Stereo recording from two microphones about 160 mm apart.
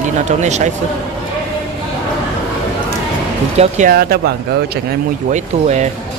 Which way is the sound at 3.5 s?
45° right (ahead or behind).